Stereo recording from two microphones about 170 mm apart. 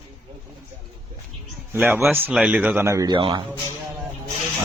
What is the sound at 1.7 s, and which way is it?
A man's voice, 10° right (ahead or behind).